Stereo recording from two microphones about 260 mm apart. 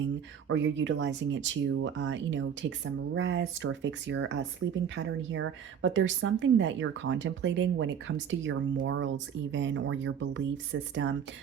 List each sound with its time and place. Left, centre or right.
0.4 s a woman's voice: right